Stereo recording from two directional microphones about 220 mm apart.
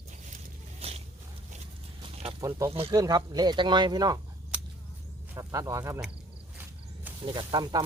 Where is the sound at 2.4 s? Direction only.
15° right (ahead or behind).